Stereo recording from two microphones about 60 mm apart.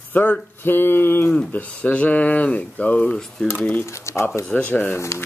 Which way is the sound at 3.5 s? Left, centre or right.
Left.